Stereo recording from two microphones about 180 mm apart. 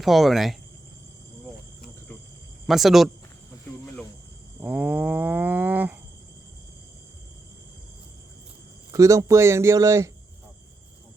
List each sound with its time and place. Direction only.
0.0 s speech: centre (ahead or behind)
2.6 s speech: centre (ahead or behind)
4.6 s livestock: 10° right (ahead or behind)
8.9 s speech: 20° right (ahead or behind)